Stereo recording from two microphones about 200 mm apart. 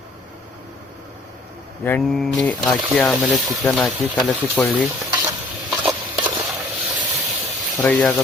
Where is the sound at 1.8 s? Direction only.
5° left (ahead or behind).